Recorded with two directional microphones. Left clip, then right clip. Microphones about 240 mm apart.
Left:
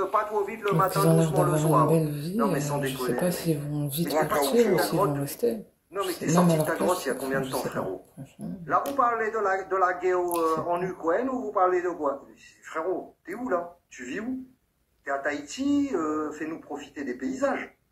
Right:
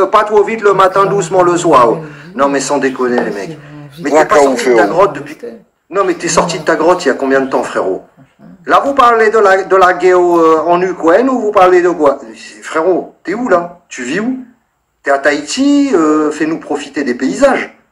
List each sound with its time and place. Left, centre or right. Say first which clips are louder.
0.0 s a man's voice: right 17 dB; right
5.4 s speech: left 1 dB; left
5.9 s a man's voice: right 15 dB; right
15.4 s a sound: right 16 dB; right
15.9 s a man's voice: right 18 dB; right